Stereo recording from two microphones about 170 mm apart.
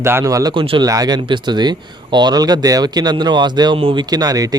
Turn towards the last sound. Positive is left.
turn(degrees=-20)  # may be behind; listen again after turning